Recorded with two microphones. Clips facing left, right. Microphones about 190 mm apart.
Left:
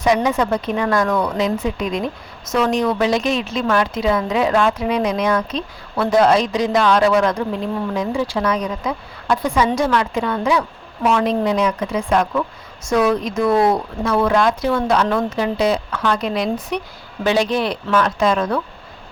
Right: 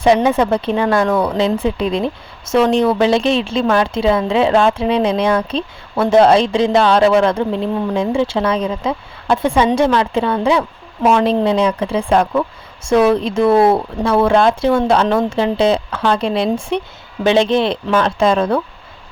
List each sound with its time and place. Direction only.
0.0 s speech: 30° right (ahead or behind)